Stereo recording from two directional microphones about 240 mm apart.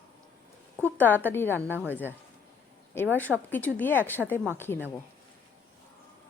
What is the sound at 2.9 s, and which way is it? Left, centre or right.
Speech, centre.